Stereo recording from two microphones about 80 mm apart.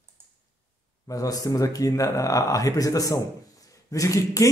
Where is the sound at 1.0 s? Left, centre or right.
Left.